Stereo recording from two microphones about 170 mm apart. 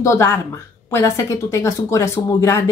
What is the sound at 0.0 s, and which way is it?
Speech, 15° left (ahead or behind).